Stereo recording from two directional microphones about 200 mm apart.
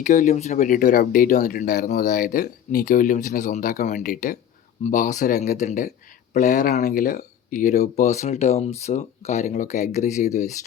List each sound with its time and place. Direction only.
0.0 s speech: 40° left (ahead or behind)